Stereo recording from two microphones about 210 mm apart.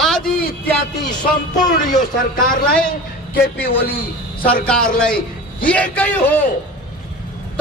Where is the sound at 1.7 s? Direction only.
40° left (ahead or behind).